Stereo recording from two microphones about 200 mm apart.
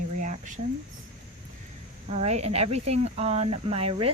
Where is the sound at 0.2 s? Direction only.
40° right (ahead or behind).